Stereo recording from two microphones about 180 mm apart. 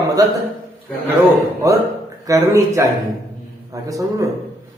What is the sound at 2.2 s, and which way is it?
A man's voice, 15° right (ahead or behind).